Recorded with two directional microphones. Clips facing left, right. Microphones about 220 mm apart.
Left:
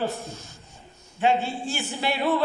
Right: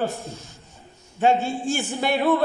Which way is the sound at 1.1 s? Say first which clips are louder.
Right 3 dB; 45° right (ahead or behind).